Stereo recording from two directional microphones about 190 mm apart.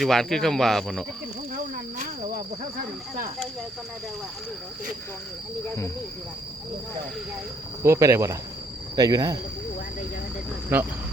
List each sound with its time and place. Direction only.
0.0 s speech: centre (ahead or behind)
1.5 s cricket: 40° right (ahead or behind)
7.8 s speech: 15° right (ahead or behind)